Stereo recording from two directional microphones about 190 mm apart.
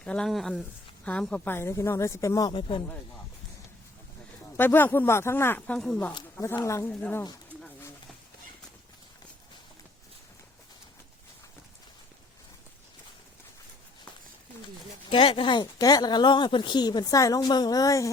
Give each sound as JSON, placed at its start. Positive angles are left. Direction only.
{"t": 0.0, "sound": "a woman's voice", "side_deg": 5}
{"t": 4.5, "sound": "a woman's voice", "side_deg": 10}
{"t": 15.1, "sound": "speech", "side_deg": 25}